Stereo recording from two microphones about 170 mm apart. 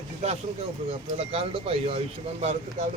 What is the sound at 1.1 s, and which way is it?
Speech, 35° right (ahead or behind).